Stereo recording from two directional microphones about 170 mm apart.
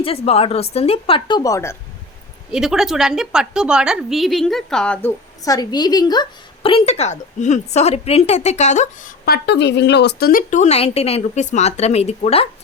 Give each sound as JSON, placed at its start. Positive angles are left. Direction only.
{"t": 0.0, "sound": "a woman's voice", "side_deg": 35}
{"t": 2.5, "sound": "a woman's voice", "side_deg": -5}
{"t": 5.5, "sound": "a woman's voice", "side_deg": 20}
{"t": 9.2, "sound": "speech", "side_deg": 70}